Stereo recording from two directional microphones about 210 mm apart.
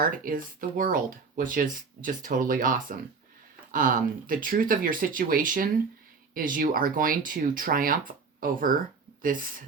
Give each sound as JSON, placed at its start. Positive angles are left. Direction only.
{"t": 0.0, "sound": "speech", "side_deg": -40}